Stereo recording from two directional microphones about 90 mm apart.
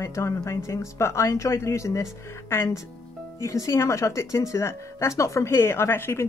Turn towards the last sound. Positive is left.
turn(degrees=25)  # may be behind; listen again after turning